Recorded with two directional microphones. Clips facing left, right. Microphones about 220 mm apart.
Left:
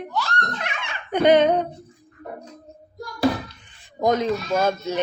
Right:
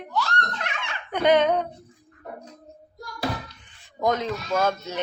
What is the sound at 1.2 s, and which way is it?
Speech, 15° left (ahead or behind).